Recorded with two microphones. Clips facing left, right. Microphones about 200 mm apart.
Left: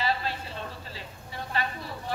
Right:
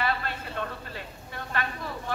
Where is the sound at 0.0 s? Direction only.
55° right (ahead or behind).